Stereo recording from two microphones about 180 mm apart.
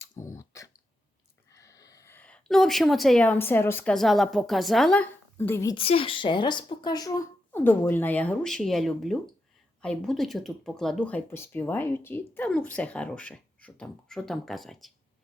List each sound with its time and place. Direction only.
0.1 s clicking: 15° left (ahead or behind)
1.5 s speech: 15° left (ahead or behind)
5.7 s speech: 30° left (ahead or behind); by 14.9 s centre (ahead or behind)